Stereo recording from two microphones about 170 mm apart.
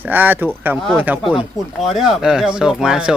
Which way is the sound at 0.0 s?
10° right (ahead or behind).